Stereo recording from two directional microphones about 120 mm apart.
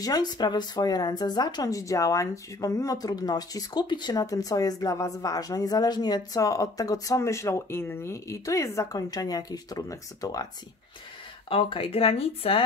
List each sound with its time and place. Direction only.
0.0 s speech: 35° left (ahead or behind)
11.4 s speech: 50° left (ahead or behind)